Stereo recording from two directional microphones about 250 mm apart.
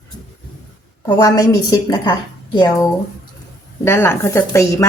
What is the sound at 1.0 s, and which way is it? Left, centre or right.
Speech, centre.